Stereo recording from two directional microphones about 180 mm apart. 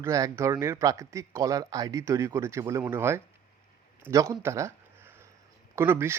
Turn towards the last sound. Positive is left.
turn(degrees=-15)  # may be behind; listen again after turning